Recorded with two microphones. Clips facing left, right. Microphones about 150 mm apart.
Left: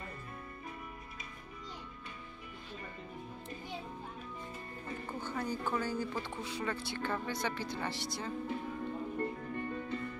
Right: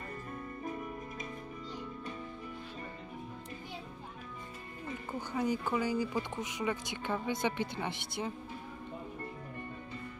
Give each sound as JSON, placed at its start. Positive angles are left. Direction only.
{"t": 5.2, "sound": "speech", "side_deg": -15}